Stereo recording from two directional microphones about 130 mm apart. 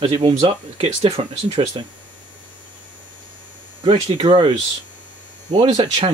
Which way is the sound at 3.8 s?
35° right (ahead or behind).